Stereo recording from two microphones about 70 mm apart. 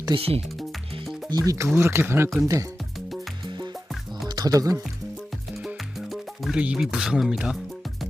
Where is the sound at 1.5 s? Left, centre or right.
Right.